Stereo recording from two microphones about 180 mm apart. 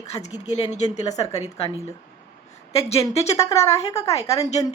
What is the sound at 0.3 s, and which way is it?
A woman's voice, 35° left (ahead or behind).